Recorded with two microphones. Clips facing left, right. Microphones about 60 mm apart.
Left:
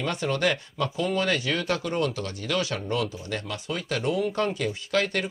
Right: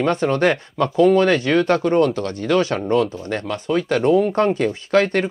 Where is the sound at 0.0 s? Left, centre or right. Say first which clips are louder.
Right 8 dB; right.